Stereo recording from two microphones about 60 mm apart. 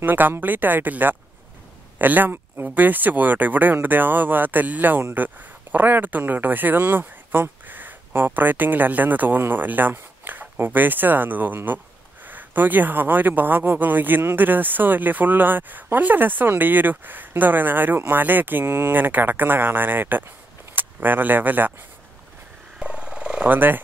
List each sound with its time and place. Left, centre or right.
0.0 s speech: right
22.8 s a sound: centre
23.5 s speech: right